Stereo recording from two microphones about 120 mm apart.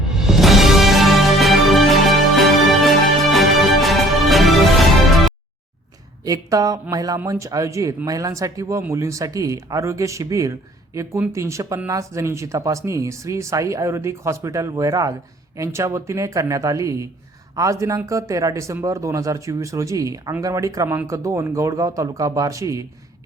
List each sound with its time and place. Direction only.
0.1 s music: 5° right (ahead or behind)
6.2 s speech: 30° right (ahead or behind)